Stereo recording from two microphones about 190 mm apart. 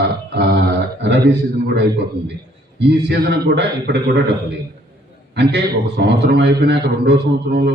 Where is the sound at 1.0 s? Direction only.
60° right (ahead or behind).